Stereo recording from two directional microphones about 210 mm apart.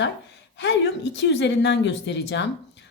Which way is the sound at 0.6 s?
60° left (ahead or behind).